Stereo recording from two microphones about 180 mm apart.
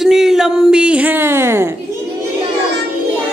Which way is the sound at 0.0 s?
Centre (ahead or behind).